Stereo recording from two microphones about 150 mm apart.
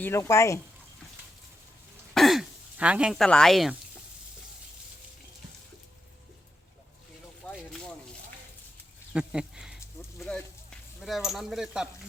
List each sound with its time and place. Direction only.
0.0 s speech: 20° left (ahead or behind)
2.1 s throat clearing: centre (ahead or behind)
3.2 s speech: 5° left (ahead or behind)
7.4 s a sound: 10° left (ahead or behind)
9.1 s a sound: 5° right (ahead or behind)
11.0 s speech: centre (ahead or behind)